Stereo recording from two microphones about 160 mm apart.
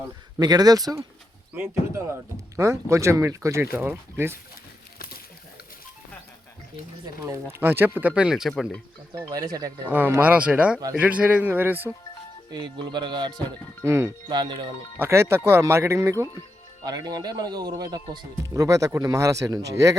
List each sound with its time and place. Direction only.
0.3 s speech: 25° right (ahead or behind)
2.6 s speech: 20° right (ahead or behind)
4.9 s a sound: 70° left (ahead or behind)
7.3 s speech: 15° right (ahead or behind); by 8.8 s centre (ahead or behind)
9.3 s speech: 25° right (ahead or behind)
9.9 s speech: 10° right (ahead or behind)
12.5 s speech: 25° right (ahead or behind)
13.8 s speech: 15° right (ahead or behind)
14.3 s speech: 30° right (ahead or behind)
14.9 s speech: 15° right (ahead or behind)